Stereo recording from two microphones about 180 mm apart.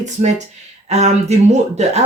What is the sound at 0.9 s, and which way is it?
Speech, 40° right (ahead or behind).